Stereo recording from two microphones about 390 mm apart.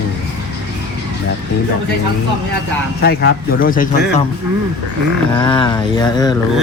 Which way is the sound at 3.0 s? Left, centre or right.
Left.